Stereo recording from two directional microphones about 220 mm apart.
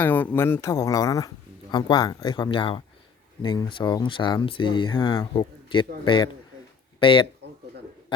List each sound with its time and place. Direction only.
0.0 s speech: 10° left (ahead or behind)